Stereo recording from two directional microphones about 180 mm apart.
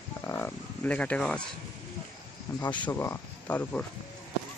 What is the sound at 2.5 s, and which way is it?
Speech, 25° left (ahead or behind).